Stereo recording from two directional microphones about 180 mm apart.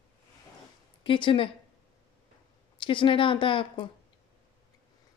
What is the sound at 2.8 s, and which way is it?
Speech, 30° left (ahead or behind).